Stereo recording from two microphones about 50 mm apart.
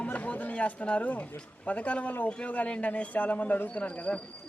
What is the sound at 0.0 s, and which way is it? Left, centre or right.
Chatter, left.